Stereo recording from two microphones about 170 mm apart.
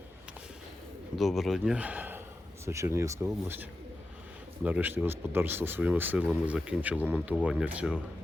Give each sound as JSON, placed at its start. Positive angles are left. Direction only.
{"t": 1.1, "sound": "speech", "side_deg": 0}